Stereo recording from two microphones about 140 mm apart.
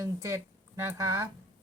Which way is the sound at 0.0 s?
25° right (ahead or behind).